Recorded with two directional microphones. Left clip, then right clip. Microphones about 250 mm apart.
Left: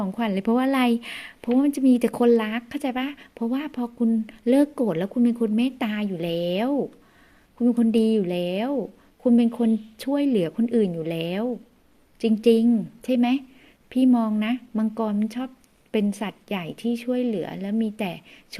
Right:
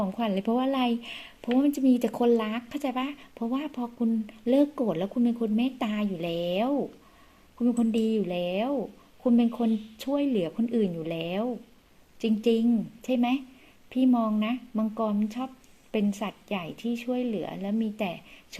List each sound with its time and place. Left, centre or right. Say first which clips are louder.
0.0 s speech: left 2 dB; left
7.8 s speech: left 7 dB; left